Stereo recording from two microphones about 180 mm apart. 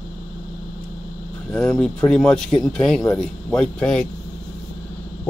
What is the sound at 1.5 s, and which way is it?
Speech, centre (ahead or behind).